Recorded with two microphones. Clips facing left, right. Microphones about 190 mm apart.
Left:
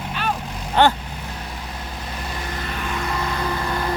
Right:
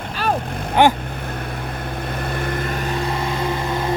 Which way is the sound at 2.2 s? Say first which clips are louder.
Right 6 dB; 55° right (ahead or behind).